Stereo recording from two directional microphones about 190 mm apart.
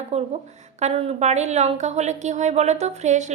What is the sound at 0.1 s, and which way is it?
A woman's voice, 35° right (ahead or behind).